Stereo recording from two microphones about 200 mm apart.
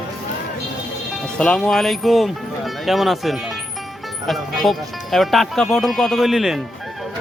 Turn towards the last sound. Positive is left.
turn(degrees=0)  # may be behind; listen again after turning